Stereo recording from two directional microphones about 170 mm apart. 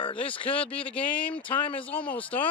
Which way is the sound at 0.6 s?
5° left (ahead or behind).